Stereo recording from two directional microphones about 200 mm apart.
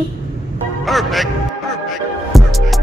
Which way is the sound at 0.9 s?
Centre (ahead or behind).